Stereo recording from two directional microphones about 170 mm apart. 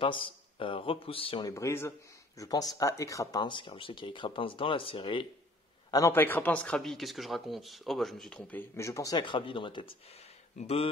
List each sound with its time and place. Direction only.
0.0 s speech: 30° left (ahead or behind)
1.5 s speech: 15° left (ahead or behind); by 5.2 s 30° left (ahead or behind)
5.9 s speech: 20° left (ahead or behind); by 10.9 s 35° left (ahead or behind)